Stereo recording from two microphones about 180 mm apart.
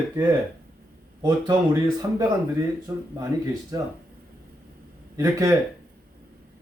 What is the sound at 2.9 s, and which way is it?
Speech, 15° right (ahead or behind).